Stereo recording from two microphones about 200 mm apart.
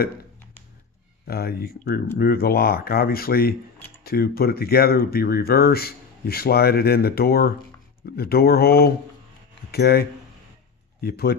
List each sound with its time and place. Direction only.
1.2 s speech: 50° left (ahead or behind)